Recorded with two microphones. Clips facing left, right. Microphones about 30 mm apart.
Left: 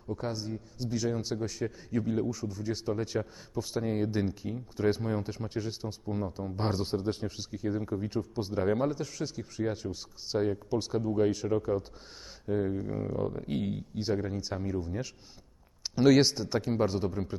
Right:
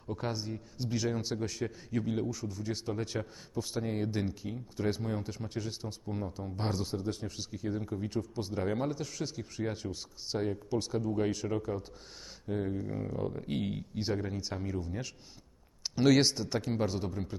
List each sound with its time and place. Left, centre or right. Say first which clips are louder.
0.2 s a man's voice: left 1 dB; centre
4.9 s speech: left 3 dB; centre
6.8 s a man's voice: left 4 dB; left
7.3 s speech: left 3 dB; centre